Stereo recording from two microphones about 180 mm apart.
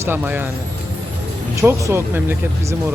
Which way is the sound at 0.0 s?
10° right (ahead or behind).